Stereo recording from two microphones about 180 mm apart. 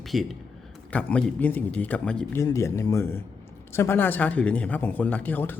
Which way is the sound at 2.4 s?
15° left (ahead or behind).